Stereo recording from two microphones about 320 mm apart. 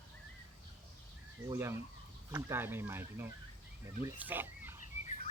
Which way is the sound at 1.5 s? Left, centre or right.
Centre.